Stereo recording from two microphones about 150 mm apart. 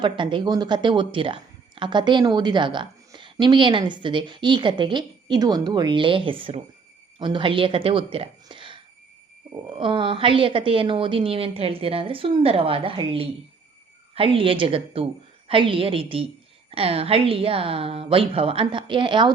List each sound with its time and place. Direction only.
0.0 s speech: 30° right (ahead or behind)